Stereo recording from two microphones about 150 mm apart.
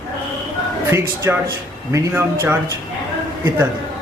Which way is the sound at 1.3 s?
15° right (ahead or behind).